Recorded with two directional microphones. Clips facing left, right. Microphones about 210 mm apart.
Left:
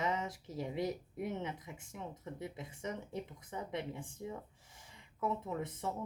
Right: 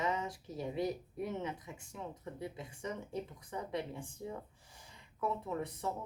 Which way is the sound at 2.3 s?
25° left (ahead or behind).